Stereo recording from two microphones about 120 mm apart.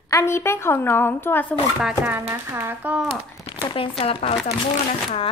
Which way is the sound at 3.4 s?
50° left (ahead or behind).